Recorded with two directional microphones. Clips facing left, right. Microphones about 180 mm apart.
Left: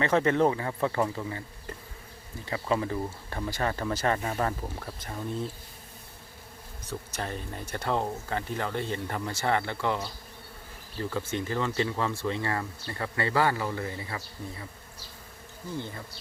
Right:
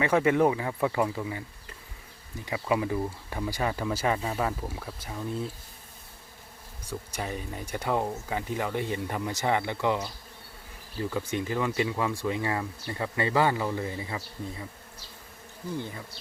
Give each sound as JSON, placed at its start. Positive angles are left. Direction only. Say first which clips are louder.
{"t": 0.0, "sound": "speech", "louder": "right 1 dB", "side_deg": -10}
{"t": 2.4, "sound": "speech", "louder": "right 1 dB", "side_deg": -15}
{"t": 6.8, "sound": "speech", "louder": "right 1 dB", "side_deg": -10}
{"t": 11.1, "sound": "speech", "louder": "right 1 dB", "side_deg": -15}